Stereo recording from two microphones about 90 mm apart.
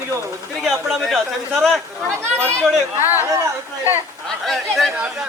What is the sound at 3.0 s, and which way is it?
Speech, 30° right (ahead or behind).